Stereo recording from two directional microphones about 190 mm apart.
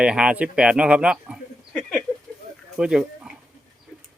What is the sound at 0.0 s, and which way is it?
Speech, 5° right (ahead or behind).